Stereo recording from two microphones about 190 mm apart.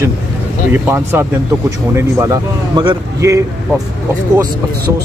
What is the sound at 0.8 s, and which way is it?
Speech, 10° right (ahead or behind).